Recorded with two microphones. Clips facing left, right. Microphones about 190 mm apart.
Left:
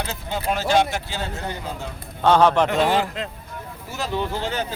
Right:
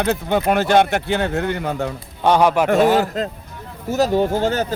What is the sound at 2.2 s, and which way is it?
Speech, 15° right (ahead or behind).